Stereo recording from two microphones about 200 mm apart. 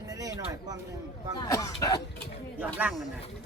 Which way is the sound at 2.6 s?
5° right (ahead or behind).